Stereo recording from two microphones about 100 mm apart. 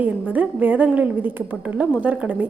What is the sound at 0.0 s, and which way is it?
A woman's voice, 15° right (ahead or behind).